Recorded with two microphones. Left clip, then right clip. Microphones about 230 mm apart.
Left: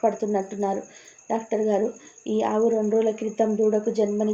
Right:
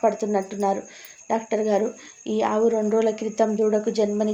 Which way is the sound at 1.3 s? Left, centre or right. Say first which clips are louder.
Right 1 dB; centre.